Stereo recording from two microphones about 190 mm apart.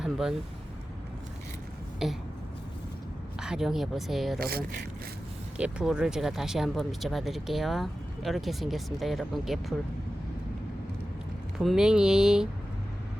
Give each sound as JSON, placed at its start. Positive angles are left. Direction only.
{"t": 0.0, "sound": "speech", "side_deg": 0}
{"t": 2.0, "sound": "speech", "side_deg": 0}
{"t": 3.4, "sound": "speech", "side_deg": -5}
{"t": 4.4, "sound": "speech", "side_deg": -55}
{"t": 5.5, "sound": "speech", "side_deg": -5}
{"t": 11.6, "sound": "speech", "side_deg": 0}